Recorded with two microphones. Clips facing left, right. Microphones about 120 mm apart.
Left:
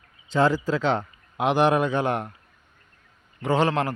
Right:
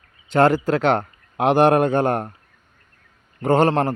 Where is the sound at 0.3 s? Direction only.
65° right (ahead or behind); by 2.3 s 45° right (ahead or behind).